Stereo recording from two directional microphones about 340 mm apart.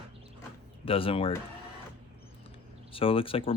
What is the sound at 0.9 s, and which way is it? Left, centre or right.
Speech, centre.